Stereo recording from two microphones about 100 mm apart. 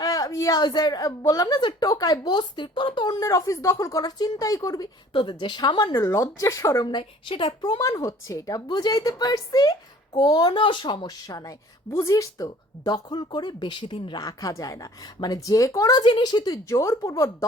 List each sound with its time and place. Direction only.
0.0 s a sound: 35° left (ahead or behind)
0.6 s a woman's voice: 45° left (ahead or behind)
3.2 s a woman's voice: 30° left (ahead or behind)
5.1 s a woman's voice: 55° left (ahead or behind)
6.1 s a woman's voice: 30° left (ahead or behind)
6.8 s a woman's voice: 55° left (ahead or behind)
7.8 s a woman's voice: 35° left (ahead or behind)
10.5 s a woman's voice: 55° left (ahead or behind)
14.3 s a woman's voice: 35° left (ahead or behind)
16.6 s a woman's voice: 30° left (ahead or behind)